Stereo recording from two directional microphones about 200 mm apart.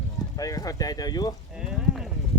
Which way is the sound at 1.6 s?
5° right (ahead or behind).